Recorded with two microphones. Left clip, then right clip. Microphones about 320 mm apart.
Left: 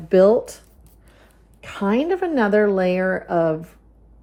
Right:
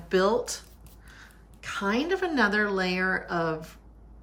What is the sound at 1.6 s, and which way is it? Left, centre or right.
A woman's voice, centre.